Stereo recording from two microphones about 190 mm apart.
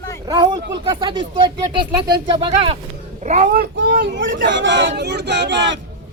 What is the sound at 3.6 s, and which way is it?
Speech, 60° right (ahead or behind).